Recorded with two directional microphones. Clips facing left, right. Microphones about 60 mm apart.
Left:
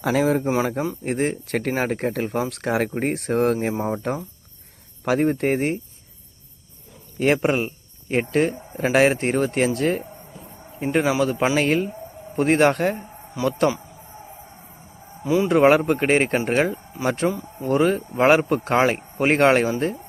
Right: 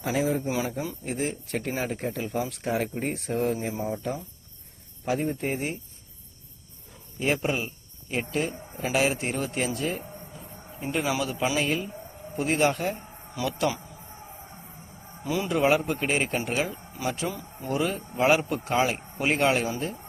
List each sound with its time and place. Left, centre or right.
0.0 s speech: left
0.4 s speech: left
1.0 s speech: left
7.2 s a man's voice: left
11.0 s speech: left
13.6 s speech: left
15.4 s speech: left